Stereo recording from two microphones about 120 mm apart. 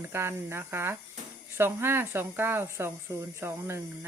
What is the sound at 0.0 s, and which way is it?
Speech, 20° right (ahead or behind).